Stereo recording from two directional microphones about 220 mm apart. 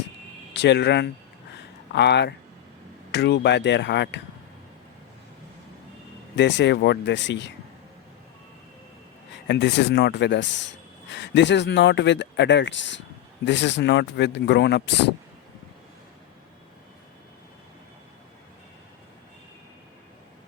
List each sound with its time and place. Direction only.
0.5 s speech: 50° left (ahead or behind)
6.3 s speech: 55° left (ahead or behind)
9.3 s speech: 50° left (ahead or behind)